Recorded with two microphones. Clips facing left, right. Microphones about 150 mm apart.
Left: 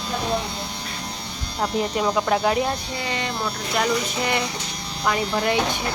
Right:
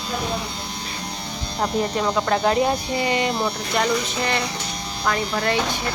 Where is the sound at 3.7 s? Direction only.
5° left (ahead or behind).